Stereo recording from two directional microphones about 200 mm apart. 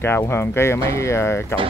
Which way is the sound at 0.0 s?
10° left (ahead or behind).